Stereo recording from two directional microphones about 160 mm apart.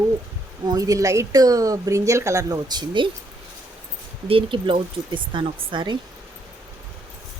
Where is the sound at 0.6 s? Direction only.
20° right (ahead or behind).